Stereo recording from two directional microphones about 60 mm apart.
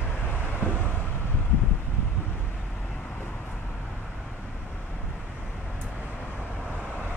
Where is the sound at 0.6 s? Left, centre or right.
Left.